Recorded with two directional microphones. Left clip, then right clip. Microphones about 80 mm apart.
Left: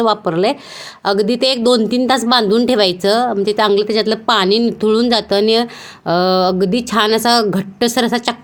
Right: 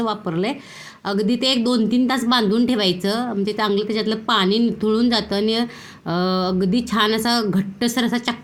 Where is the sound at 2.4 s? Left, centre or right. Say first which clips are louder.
Left 7 dB; left.